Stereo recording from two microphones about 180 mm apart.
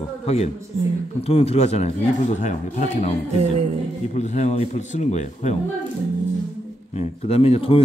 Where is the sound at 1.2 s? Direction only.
35° left (ahead or behind).